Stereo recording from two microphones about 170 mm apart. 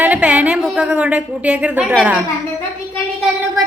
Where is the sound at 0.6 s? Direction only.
5° right (ahead or behind).